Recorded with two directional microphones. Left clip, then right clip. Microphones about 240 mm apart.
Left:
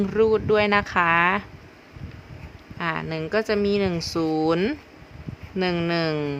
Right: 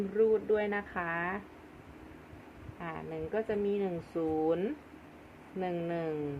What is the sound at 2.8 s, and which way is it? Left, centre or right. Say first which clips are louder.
Speech: left 12 dB; left.